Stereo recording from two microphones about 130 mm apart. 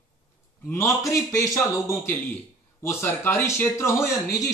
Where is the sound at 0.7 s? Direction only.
25° left (ahead or behind).